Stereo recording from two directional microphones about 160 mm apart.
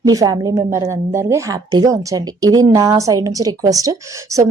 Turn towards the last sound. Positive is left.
turn(degrees=-20)  # may be behind; listen again after turning